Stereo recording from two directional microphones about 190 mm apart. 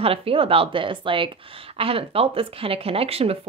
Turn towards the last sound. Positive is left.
turn(degrees=-30)  # may be behind; listen again after turning